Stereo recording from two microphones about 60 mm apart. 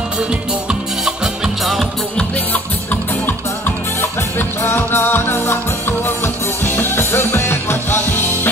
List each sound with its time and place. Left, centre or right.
0.3 s music: centre
1.6 s music: centre
2.3 s music: left
4.0 s music: left